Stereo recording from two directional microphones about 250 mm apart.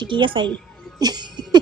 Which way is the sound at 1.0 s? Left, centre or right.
Centre.